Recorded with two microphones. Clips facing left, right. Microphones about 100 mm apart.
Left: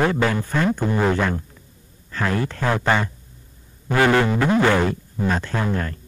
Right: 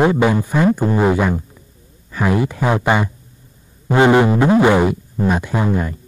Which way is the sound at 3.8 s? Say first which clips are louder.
Right 5 dB; 20° right (ahead or behind).